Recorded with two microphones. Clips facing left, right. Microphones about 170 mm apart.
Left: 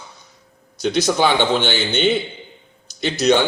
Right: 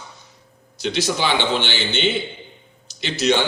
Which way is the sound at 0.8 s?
45° left (ahead or behind).